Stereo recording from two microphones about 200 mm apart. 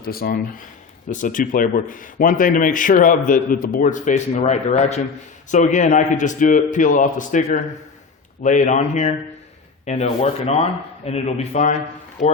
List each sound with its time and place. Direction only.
0.0 s a man's voice: 50° left (ahead or behind)